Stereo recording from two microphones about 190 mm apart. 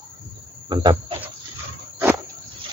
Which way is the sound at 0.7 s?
25° right (ahead or behind).